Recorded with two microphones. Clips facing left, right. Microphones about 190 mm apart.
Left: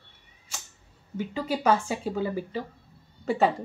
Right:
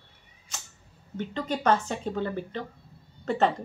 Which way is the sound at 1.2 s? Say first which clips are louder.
Left 1 dB; 5° left (ahead or behind).